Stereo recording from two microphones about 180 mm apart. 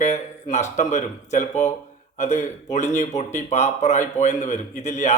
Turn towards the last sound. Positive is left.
turn(degrees=40)  # may be behind; listen again after turning